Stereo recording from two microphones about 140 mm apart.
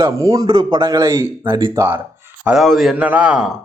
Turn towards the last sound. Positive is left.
turn(degrees=-5)  # may be behind; listen again after turning